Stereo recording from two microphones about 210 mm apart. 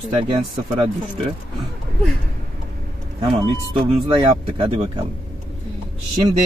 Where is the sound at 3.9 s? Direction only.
25° right (ahead or behind).